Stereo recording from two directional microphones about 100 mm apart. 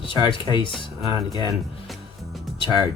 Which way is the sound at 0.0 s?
55° left (ahead or behind).